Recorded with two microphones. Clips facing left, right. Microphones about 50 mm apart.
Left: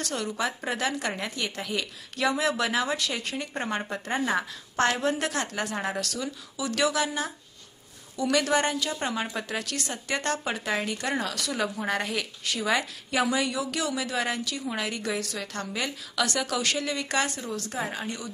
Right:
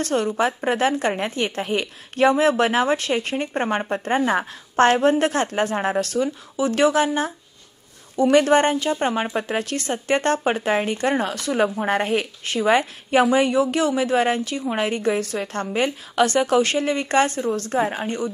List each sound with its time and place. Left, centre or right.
0.0 s a woman's voice: right
8.2 s a woman's voice: right